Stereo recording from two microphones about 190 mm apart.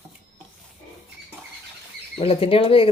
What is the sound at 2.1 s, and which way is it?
Speech, 30° left (ahead or behind).